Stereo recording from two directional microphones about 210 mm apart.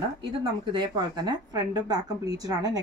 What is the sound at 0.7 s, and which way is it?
Speech, 20° right (ahead or behind).